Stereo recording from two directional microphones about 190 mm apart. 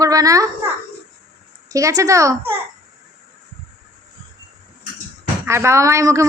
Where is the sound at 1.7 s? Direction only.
15° right (ahead or behind).